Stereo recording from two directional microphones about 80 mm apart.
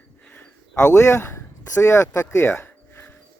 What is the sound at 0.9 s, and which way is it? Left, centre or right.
Speech, left.